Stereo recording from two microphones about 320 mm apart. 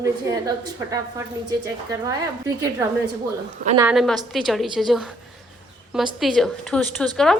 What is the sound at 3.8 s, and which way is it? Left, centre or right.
A woman's voice, centre.